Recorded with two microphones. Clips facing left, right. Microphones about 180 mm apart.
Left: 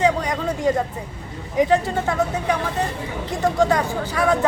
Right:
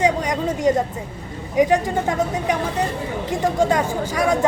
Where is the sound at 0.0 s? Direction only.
20° right (ahead or behind).